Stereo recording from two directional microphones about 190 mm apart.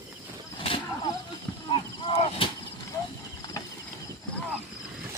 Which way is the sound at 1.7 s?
25° left (ahead or behind).